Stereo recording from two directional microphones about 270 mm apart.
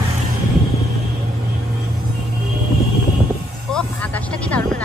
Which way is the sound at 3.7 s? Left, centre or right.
Centre.